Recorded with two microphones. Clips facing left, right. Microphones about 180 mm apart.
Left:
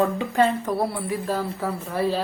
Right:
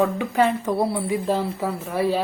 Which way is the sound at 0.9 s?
25° right (ahead or behind).